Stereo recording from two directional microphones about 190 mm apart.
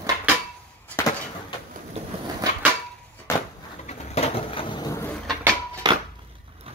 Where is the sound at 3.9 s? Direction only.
30° left (ahead or behind).